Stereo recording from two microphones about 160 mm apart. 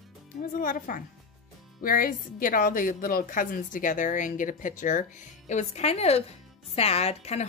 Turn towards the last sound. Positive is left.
turn(degrees=40)  # may be behind; listen again after turning